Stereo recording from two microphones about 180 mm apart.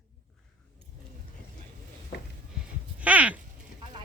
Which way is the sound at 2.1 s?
60° left (ahead or behind).